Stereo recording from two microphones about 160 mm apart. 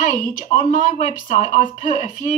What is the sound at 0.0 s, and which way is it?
A woman's voice, 50° left (ahead or behind).